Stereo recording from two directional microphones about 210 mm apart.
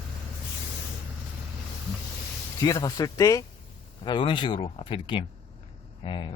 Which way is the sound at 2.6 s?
15° left (ahead or behind).